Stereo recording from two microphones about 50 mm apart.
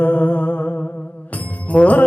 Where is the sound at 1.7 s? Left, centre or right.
Centre.